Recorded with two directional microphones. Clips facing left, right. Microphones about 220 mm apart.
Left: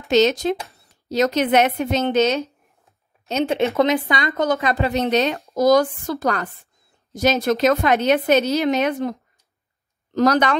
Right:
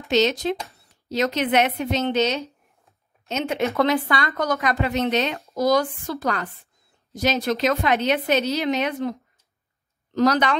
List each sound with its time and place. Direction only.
0.1 s a woman's voice: 45° left (ahead or behind)
3.3 s speech: 35° left (ahead or behind)
3.7 s a woman's voice: 15° left (ahead or behind); by 9.1 s 45° left (ahead or behind)
10.1 s a woman's voice: 45° left (ahead or behind)